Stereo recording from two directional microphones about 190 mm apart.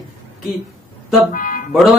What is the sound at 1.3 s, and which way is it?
Music, 45° left (ahead or behind).